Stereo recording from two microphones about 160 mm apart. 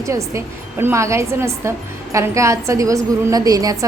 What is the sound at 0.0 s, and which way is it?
A woman's voice, 20° right (ahead or behind).